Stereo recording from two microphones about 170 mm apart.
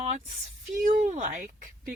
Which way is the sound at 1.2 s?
45° right (ahead or behind).